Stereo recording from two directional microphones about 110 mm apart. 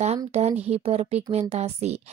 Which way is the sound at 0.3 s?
75° right (ahead or behind).